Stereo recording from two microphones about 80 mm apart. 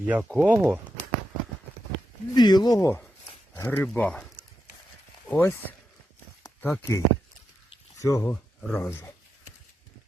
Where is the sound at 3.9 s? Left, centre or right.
Centre.